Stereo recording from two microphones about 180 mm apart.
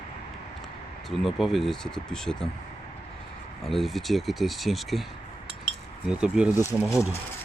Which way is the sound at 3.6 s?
Centre (ahead or behind).